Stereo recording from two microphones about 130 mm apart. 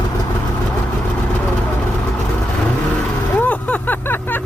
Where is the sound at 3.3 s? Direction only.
10° left (ahead or behind).